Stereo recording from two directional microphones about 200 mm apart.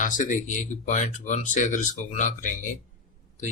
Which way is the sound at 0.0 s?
40° left (ahead or behind).